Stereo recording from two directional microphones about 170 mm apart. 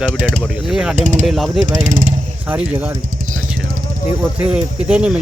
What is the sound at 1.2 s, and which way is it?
Speech, centre (ahead or behind).